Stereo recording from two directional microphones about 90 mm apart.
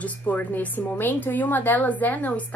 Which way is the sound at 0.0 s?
20° left (ahead or behind).